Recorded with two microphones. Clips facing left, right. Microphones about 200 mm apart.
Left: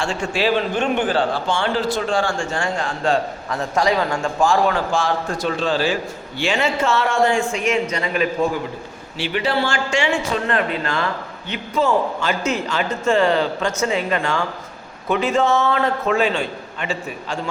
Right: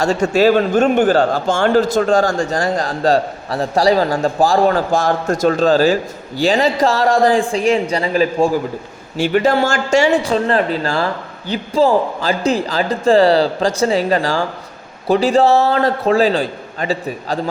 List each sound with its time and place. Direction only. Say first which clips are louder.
0.0 s a man's voice: right 8 dB; 40° right (ahead or behind)
9.1 s a man's voice: right 7 dB; 45° right (ahead or behind)